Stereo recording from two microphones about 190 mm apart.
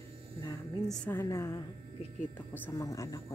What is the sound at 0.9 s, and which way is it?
A woman's voice, 10° left (ahead or behind).